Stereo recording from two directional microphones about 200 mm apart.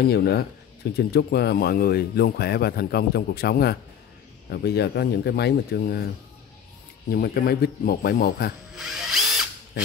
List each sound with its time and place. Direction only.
0.0 s speech: 55° left (ahead or behind)
7.1 s speech: 50° left (ahead or behind)
8.7 s drill: centre (ahead or behind)